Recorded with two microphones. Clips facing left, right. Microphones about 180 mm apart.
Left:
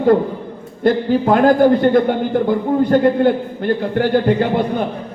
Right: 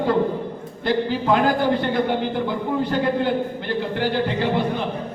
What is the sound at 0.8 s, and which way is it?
A man's voice, 45° left (ahead or behind).